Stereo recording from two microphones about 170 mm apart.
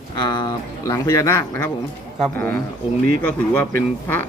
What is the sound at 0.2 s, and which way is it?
Speech, 25° left (ahead or behind).